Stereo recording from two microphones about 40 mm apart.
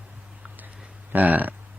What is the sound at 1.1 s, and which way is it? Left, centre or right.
Speech, right.